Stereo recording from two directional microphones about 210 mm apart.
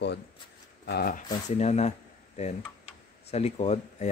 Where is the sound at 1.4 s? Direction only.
30° left (ahead or behind).